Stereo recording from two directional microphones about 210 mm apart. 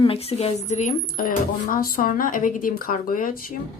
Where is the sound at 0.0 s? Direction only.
25° left (ahead or behind).